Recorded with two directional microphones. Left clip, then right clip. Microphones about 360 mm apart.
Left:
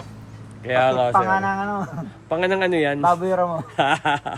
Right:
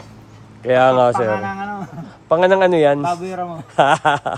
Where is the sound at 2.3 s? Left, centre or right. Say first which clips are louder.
Right 7 dB; centre.